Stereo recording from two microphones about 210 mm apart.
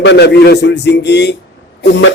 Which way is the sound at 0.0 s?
55° left (ahead or behind).